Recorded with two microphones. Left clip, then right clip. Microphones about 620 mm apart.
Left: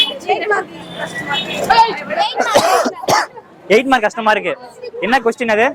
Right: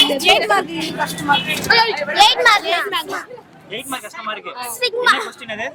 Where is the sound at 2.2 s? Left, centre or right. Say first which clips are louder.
Right 6 dB; right.